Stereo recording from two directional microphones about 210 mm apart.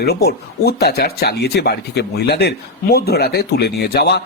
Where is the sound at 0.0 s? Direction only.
50° left (ahead or behind).